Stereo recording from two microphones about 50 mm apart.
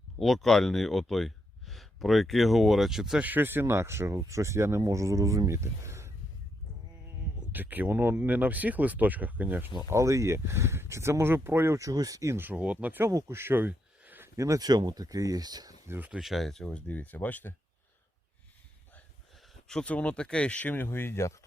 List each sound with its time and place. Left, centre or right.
0.2 s speech: centre
3.2 s speech: right
7.5 s speech: right
9.9 s speech: right
11.8 s speech: right
12.5 s speech: right
13.1 s speech: right
14.3 s speech: right
15.9 s speech: right
16.2 s speech: centre
16.8 s speech: left
19.8 s speech: left
20.8 s speech: left